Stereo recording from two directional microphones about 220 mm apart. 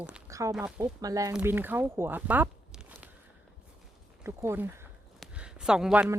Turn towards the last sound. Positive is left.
turn(degrees=-5)  # may be behind; listen again after turning